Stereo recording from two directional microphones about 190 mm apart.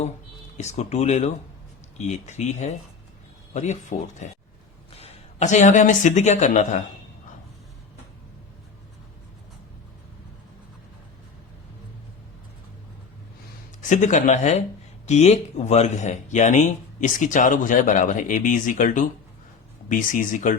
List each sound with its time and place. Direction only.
0.5 s speech: 35° left (ahead or behind)
13.9 s speech: 40° left (ahead or behind)